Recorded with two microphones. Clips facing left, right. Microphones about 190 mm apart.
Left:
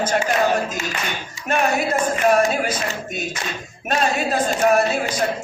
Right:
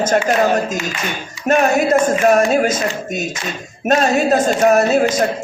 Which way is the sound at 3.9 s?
45° right (ahead or behind).